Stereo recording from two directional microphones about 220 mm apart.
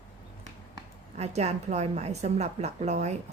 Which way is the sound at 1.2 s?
30° right (ahead or behind).